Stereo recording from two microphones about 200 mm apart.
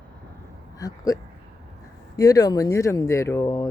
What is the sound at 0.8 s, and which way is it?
Speech, 15° left (ahead or behind).